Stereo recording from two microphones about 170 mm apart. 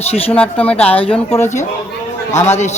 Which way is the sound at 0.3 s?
5° left (ahead or behind).